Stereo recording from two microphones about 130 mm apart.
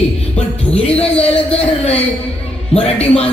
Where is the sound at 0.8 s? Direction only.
10° left (ahead or behind).